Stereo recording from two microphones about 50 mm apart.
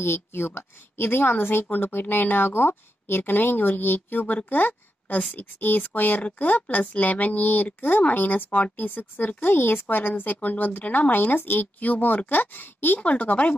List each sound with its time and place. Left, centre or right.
0.0 s a woman's voice: left
13.0 s speech: left